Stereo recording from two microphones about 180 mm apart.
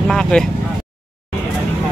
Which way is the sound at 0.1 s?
5° left (ahead or behind).